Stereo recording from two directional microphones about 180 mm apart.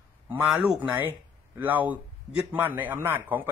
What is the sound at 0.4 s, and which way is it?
A man's voice, 10° right (ahead or behind).